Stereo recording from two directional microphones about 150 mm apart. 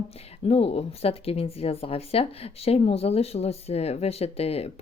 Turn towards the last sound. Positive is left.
turn(degrees=40)  # may be behind; listen again after turning